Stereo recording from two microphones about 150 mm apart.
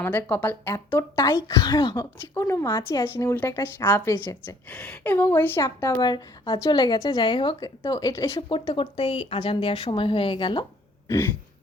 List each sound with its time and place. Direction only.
0.0 s a woman's voice: 15° left (ahead or behind); by 2.0 s 30° left (ahead or behind)
2.3 s a woman's voice: 20° left (ahead or behind)
5.9 s a woman's voice: 30° left (ahead or behind)
8.4 s speech: 35° left (ahead or behind)
11.1 s a woman's voice: 15° left (ahead or behind)